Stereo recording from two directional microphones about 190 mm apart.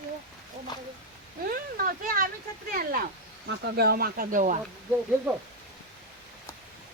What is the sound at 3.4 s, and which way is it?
Speech, 70° right (ahead or behind).